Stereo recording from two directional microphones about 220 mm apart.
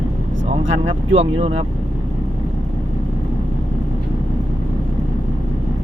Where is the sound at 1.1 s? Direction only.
30° right (ahead or behind).